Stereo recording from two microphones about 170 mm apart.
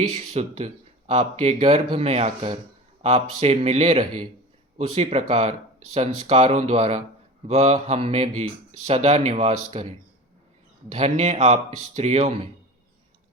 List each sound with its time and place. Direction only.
0.1 s speech: 40° right (ahead or behind)
10.9 s speech: 40° right (ahead or behind)